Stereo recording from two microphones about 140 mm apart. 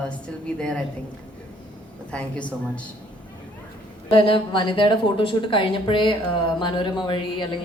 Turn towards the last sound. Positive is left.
turn(degrees=35)  # may be behind; listen again after turning